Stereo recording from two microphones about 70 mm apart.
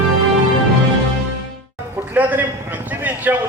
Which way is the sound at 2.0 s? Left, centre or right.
Right.